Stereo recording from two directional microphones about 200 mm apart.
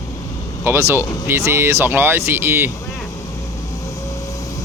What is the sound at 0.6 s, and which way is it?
Speech, 10° right (ahead or behind).